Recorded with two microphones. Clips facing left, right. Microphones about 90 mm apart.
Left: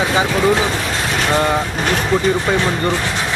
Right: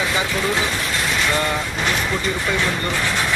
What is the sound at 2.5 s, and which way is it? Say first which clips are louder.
Speech: left 5 dB; 35° left (ahead or behind).